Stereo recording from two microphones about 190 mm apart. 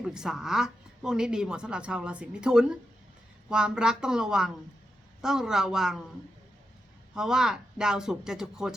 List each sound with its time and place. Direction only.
0.0 s a woman's voice: 5° right (ahead or behind)
7.1 s a woman's voice: 5° right (ahead or behind)